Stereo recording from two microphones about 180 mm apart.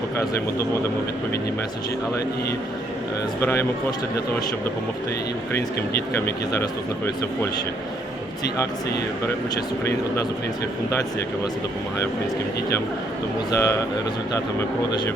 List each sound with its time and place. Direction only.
3.4 s speech: 15° left (ahead or behind)
13.5 s speech: 15° left (ahead or behind)